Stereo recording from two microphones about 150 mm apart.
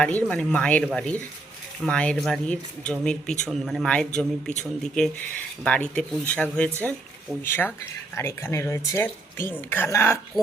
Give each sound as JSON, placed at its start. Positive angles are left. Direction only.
{"t": 0.0, "sound": "a man's voice", "side_deg": 10}